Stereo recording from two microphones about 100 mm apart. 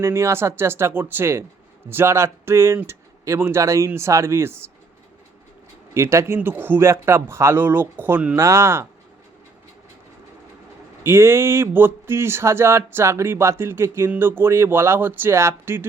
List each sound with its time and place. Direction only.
0.0 s speech: 25° right (ahead or behind)
5.9 s speech: 30° right (ahead or behind)
11.0 s speech: 25° right (ahead or behind)